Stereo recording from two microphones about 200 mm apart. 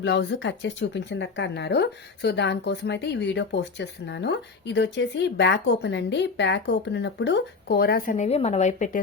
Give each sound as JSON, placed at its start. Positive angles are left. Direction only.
{"t": 0.0, "sound": "speech", "side_deg": 60}